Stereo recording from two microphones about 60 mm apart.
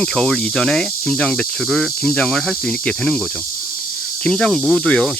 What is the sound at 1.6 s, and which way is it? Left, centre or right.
Cricket, centre.